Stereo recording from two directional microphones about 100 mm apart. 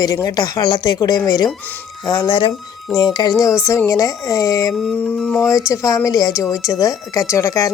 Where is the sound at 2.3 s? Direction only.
65° left (ahead or behind).